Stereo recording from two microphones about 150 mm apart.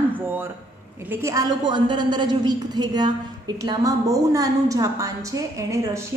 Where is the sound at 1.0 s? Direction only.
15° right (ahead or behind).